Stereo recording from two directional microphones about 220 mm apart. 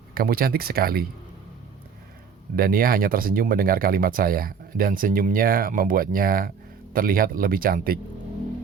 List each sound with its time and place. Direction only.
0.1 s speech: 40° right (ahead or behind)
2.6 s speech: 40° right (ahead or behind)